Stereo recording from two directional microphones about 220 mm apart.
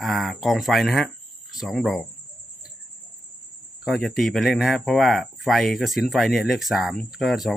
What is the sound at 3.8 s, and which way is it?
Speech, centre (ahead or behind).